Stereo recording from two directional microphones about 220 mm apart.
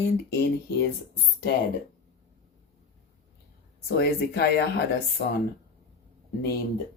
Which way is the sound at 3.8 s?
45° left (ahead or behind).